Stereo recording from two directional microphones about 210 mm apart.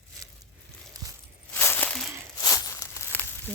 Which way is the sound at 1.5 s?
10° left (ahead or behind).